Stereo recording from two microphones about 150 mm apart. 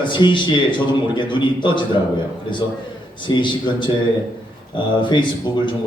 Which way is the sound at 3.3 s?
30° left (ahead or behind).